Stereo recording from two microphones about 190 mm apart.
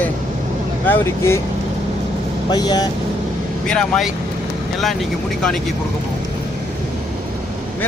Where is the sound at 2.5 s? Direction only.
20° left (ahead or behind).